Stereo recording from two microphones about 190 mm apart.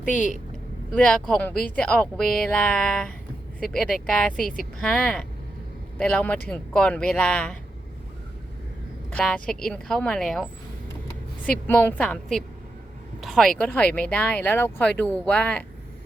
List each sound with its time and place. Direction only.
0.9 s speech: 5° left (ahead or behind)
9.1 s speech: 5° left (ahead or behind)